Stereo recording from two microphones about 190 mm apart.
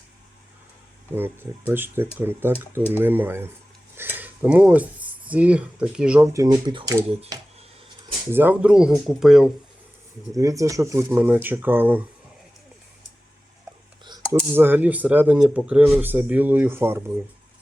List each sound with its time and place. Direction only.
1.1 s speech: 10° right (ahead or behind)
3.9 s cutlery: 10° right (ahead or behind)
5.3 s speech: 5° right (ahead or behind)
6.3 s speech: 20° right (ahead or behind)
8.3 s speech: 10° right (ahead or behind)
10.3 s speech: 15° right (ahead or behind)
14.5 s speech: 10° right (ahead or behind)